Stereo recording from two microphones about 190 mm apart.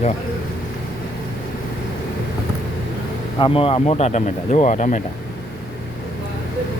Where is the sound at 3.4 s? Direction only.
30° left (ahead or behind).